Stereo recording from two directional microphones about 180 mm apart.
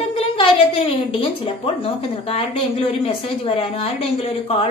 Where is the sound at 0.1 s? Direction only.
35° left (ahead or behind).